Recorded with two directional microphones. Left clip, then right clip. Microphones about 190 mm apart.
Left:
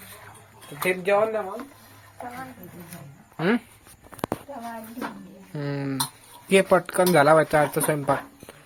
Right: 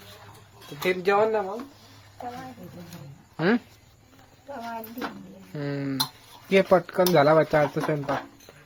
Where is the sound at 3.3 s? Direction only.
10° right (ahead or behind).